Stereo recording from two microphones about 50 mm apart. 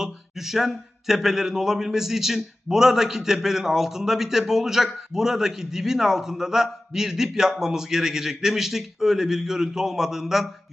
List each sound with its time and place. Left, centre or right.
0.0 s speech: centre